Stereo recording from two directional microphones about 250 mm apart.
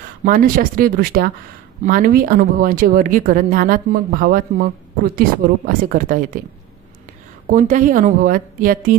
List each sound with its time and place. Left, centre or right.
0.2 s speech: right
7.4 s speech: right